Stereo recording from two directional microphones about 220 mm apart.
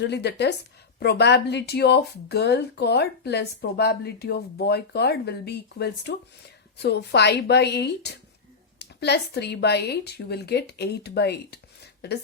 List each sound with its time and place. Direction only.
0.0 s speech: 50° left (ahead or behind)